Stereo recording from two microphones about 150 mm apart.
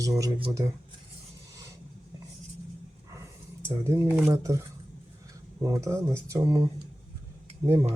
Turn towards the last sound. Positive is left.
turn(degrees=-20)  # may be behind; listen again after turning